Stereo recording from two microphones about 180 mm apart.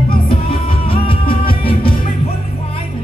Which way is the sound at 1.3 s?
30° left (ahead or behind).